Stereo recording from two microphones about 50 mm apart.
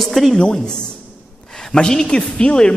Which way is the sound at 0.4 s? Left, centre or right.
Centre.